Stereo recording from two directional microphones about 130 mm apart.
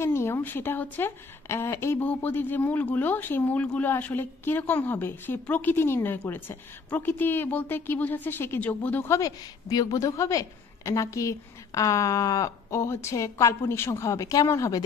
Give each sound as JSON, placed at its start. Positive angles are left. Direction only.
{"t": 0.0, "sound": "a woman's voice", "side_deg": 20}